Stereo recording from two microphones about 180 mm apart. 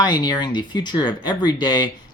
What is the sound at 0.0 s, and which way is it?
Speech, 20° left (ahead or behind).